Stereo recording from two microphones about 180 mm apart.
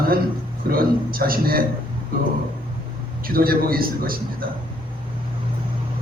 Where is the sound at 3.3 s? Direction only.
55° right (ahead or behind).